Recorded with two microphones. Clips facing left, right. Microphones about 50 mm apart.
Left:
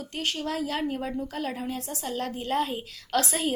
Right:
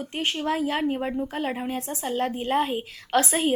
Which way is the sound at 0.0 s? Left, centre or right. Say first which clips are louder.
Right 4 dB; right.